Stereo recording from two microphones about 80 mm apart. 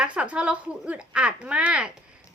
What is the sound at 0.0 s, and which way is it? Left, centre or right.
A child's voice, centre.